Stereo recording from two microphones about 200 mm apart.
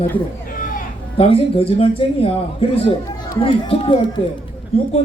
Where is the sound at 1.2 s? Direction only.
30° left (ahead or behind).